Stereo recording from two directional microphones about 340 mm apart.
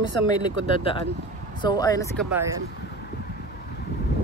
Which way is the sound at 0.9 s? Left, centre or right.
Centre.